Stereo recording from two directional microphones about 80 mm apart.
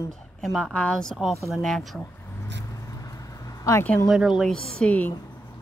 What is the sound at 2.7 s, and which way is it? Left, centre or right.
Vehicle, left.